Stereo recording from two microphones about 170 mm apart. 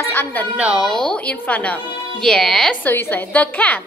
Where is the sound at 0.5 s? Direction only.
5° right (ahead or behind).